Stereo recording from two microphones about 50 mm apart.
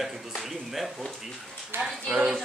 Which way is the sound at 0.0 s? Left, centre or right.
Centre.